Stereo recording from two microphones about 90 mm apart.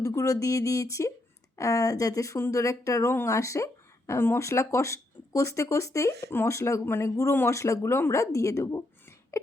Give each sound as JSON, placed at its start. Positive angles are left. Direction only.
{"t": 0.0, "sound": "speech", "side_deg": 35}